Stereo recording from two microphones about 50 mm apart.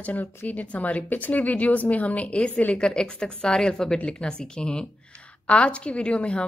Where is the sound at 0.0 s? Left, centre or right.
Left.